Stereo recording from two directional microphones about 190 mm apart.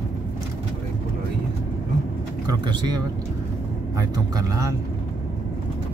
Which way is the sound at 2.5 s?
25° right (ahead or behind).